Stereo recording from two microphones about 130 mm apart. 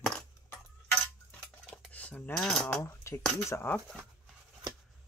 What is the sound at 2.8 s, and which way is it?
Speech, 20° left (ahead or behind).